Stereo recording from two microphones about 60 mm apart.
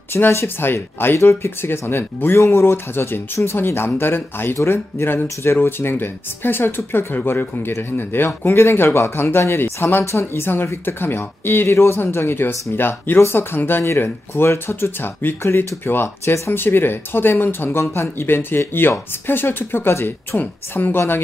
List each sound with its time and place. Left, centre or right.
0.1 s speech: left
2.3 s speech: left